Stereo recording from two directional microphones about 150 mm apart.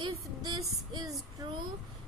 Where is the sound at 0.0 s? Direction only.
30° right (ahead or behind).